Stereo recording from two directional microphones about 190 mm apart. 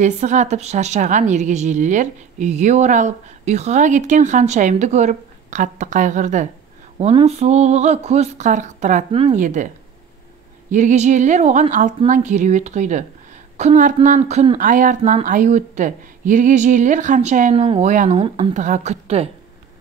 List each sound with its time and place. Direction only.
0.0 s a woman's voice: 40° right (ahead or behind)
10.7 s a woman's voice: 40° right (ahead or behind)